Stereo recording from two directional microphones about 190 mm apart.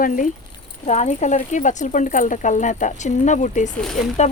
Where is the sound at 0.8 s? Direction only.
35° left (ahead or behind).